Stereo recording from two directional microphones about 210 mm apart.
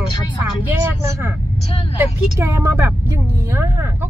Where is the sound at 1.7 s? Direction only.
30° left (ahead or behind).